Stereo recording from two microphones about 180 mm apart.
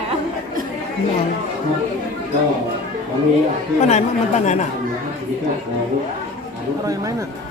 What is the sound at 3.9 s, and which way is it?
Speech, 40° left (ahead or behind).